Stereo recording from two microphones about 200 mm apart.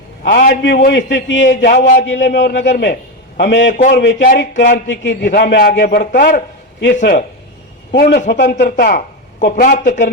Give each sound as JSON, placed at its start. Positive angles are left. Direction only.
{"t": 0.2, "sound": "a man's voice", "side_deg": 45}
{"t": 1.5, "sound": "speech", "side_deg": 55}
{"t": 3.7, "sound": "a man's voice", "side_deg": 40}
{"t": 3.9, "sound": "a man's voice", "side_deg": 55}
{"t": 7.0, "sound": "speech", "side_deg": 55}
{"t": 7.9, "sound": "a man's voice", "side_deg": 45}
{"t": 8.3, "sound": "a man's voice", "side_deg": 55}